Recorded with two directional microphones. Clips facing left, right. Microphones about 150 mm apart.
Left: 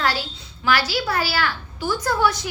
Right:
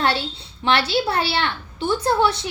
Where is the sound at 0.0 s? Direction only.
30° right (ahead or behind).